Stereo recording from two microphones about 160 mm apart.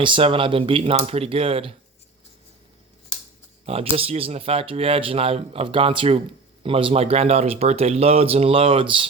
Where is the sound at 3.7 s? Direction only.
40° right (ahead or behind).